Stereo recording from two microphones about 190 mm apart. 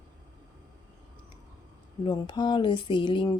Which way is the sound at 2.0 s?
25° left (ahead or behind).